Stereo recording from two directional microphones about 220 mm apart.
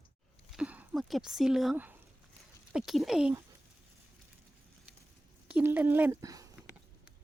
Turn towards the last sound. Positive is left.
turn(degrees=-15)  # may be behind; listen again after turning